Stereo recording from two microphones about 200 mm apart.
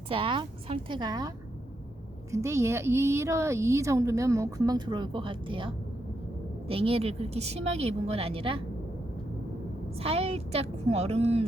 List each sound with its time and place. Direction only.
0.1 s a woman's voice: 25° right (ahead or behind)
2.3 s a woman's voice: 15° right (ahead or behind)
10.0 s a woman's voice: 30° right (ahead or behind)